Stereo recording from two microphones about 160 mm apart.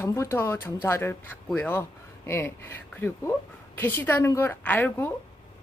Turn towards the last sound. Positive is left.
turn(degrees=10)  # may be behind; listen again after turning